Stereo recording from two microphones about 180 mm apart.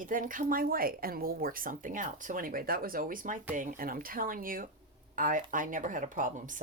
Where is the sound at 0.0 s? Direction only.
50° right (ahead or behind).